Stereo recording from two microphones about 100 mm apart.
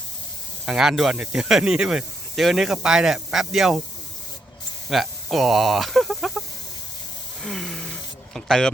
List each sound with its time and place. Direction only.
0.6 s speech: 5° right (ahead or behind)
4.9 s speech: centre (ahead or behind)
7.4 s a sound: 5° left (ahead or behind)